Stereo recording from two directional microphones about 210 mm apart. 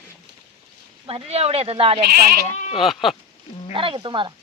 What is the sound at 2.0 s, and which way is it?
Speech, 45° right (ahead or behind).